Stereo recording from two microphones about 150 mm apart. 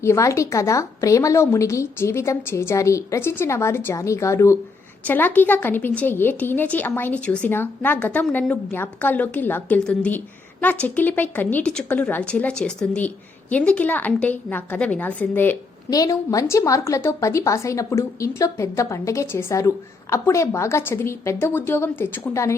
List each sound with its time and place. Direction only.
0.0 s a woman's voice: 20° left (ahead or behind)
15.9 s a woman's voice: 25° left (ahead or behind)